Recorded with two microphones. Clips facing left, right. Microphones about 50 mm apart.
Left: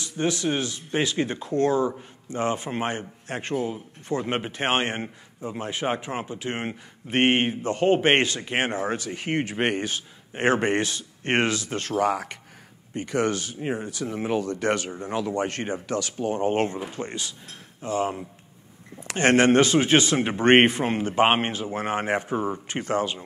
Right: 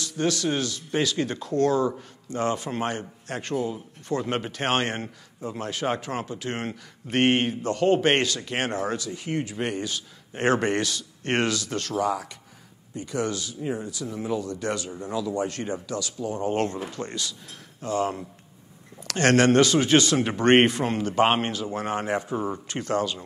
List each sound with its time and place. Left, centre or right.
0.0 s a man's voice: left
9.1 s a man's voice: left
11.9 s speech: left
16.5 s a man's voice: left